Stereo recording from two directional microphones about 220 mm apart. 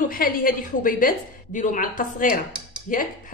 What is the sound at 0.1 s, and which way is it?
A woman's voice, 40° left (ahead or behind).